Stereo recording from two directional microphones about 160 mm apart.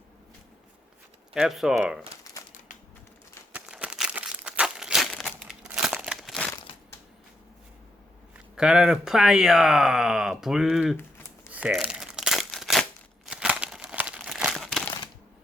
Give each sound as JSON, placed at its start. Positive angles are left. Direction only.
{"t": 1.3, "sound": "speech", "side_deg": 0}
{"t": 3.5, "sound": "crumpling", "side_deg": -5}
{"t": 8.5, "sound": "speech", "side_deg": -5}
{"t": 10.9, "sound": "a sound", "side_deg": 15}
{"t": 11.5, "sound": "crumpling", "side_deg": -5}